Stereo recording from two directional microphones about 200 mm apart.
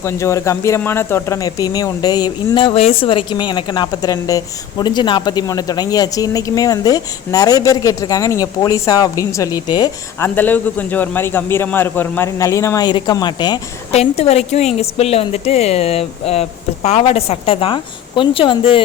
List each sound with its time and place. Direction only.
0.0 s speech: 15° left (ahead or behind)
10.2 s a man's voice: 10° left (ahead or behind)
13.9 s a woman's voice: 30° left (ahead or behind)